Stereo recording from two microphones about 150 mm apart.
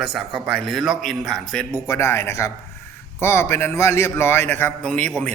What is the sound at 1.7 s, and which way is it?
A man's voice, 20° left (ahead or behind).